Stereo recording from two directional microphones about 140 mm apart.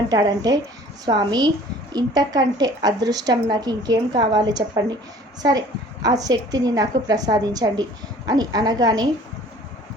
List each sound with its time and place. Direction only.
0.1 s a woman's voice: 25° right (ahead or behind)